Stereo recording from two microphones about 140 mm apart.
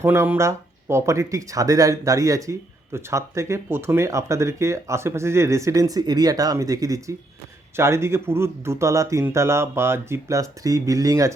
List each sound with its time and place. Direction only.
0.0 s speech: 20° right (ahead or behind)